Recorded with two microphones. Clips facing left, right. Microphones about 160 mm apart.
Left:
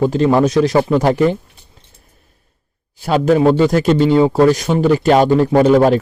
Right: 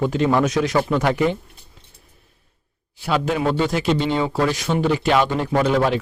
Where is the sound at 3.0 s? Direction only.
40° left (ahead or behind).